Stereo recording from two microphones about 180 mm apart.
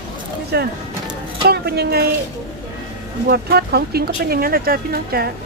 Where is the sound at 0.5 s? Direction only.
65° right (ahead or behind).